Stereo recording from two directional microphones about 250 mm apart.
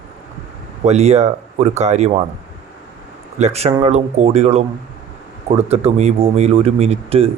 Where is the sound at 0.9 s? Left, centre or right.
Right.